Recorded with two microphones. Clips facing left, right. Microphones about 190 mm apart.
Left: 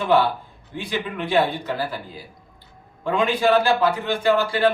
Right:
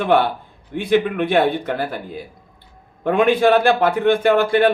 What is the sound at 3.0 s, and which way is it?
A man's voice, 60° right (ahead or behind).